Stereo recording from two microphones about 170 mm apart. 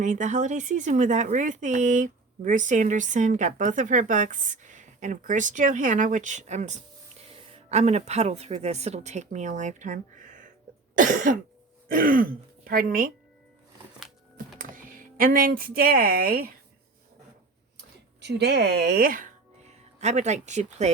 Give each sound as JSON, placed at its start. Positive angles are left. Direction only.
{"t": 0.0, "sound": "a woman's voice", "side_deg": -45}
{"t": 10.9, "sound": "cough", "side_deg": -50}
{"t": 11.9, "sound": "speech", "side_deg": -55}
{"t": 14.6, "sound": "speech", "side_deg": -55}
{"t": 17.7, "sound": "a sound", "side_deg": -80}